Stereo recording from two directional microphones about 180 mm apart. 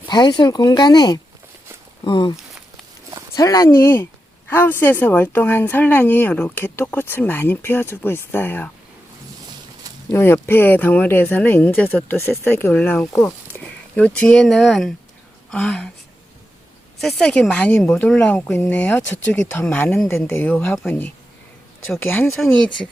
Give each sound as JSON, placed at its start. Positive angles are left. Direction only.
{"t": 0.1, "sound": "speech", "side_deg": 25}
{"t": 10.1, "sound": "a woman's voice", "side_deg": 10}
{"t": 17.0, "sound": "speech", "side_deg": 0}